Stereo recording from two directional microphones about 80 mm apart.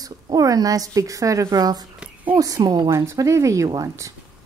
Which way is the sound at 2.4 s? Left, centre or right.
Right.